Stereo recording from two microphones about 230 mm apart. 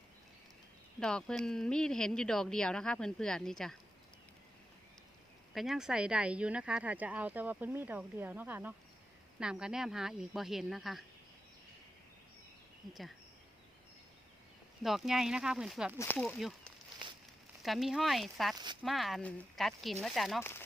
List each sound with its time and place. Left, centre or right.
0.9 s speech: centre
5.5 s speech: centre
12.9 s speech: centre
14.8 s speech: centre
17.6 s speech: centre
18.5 s speech: centre
18.8 s speech: centre